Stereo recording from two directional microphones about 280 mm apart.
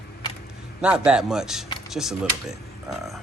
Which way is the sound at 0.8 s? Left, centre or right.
Centre.